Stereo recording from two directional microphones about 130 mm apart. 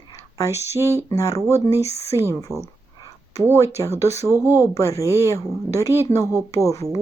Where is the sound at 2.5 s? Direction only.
20° right (ahead or behind).